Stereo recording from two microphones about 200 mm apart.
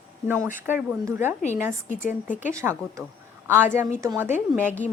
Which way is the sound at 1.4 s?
40° left (ahead or behind).